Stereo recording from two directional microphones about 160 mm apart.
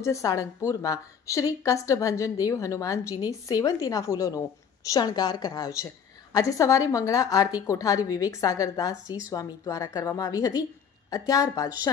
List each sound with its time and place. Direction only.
0.0 s a woman's voice: 20° left (ahead or behind)